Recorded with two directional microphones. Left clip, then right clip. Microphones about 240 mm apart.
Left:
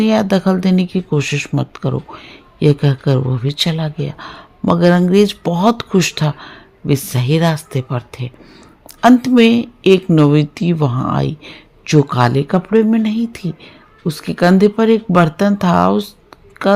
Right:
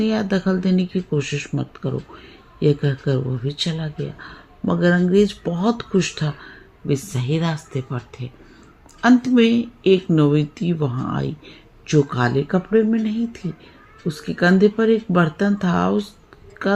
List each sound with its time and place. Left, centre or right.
0.0 s speech: left